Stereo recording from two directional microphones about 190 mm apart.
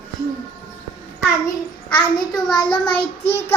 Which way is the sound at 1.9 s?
5° left (ahead or behind).